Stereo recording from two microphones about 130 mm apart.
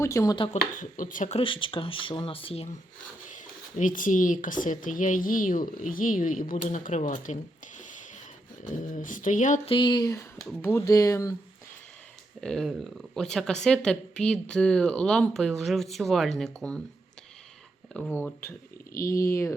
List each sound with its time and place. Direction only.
0.0 s speech: 20° left (ahead or behind)
0.5 s speech: 90° left
1.4 s speech: 40° left (ahead or behind)
3.3 s speech: 85° left
8.6 s speech: 80° left
9.6 s speech: 40° left (ahead or behind)
12.4 s speech: 5° left (ahead or behind)
18.1 s speech: 15° left (ahead or behind)